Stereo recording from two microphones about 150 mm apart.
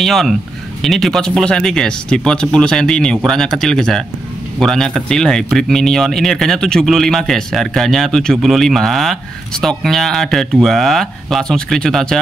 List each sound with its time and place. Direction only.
0.0 s speech: centre (ahead or behind)